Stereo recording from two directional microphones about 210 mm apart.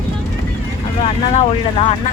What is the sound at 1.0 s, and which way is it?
Speech, 25° left (ahead or behind).